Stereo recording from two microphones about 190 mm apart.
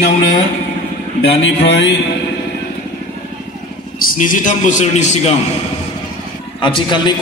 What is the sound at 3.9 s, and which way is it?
A man's voice, 45° left (ahead or behind).